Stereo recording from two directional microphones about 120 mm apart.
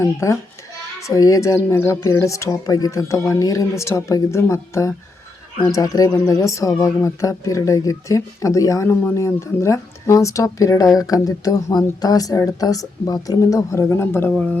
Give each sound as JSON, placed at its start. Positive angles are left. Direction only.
{"t": 0.0, "sound": "speech", "side_deg": 25}